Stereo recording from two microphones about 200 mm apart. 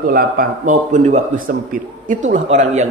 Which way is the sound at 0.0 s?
45° right (ahead or behind).